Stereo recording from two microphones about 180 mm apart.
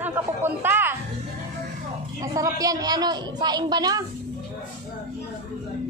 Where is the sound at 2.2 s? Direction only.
20° right (ahead or behind).